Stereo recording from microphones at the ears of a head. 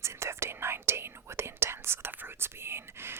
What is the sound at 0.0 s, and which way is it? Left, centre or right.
Whispering, right.